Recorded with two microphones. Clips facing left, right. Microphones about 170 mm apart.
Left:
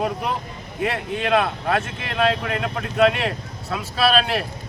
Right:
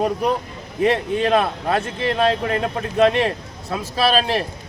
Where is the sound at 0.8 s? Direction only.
35° right (ahead or behind).